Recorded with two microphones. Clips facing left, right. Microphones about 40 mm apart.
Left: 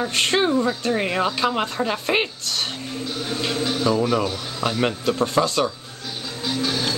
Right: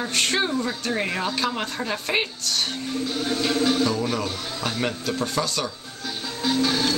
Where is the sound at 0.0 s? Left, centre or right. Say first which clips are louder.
Left 3 dB; centre.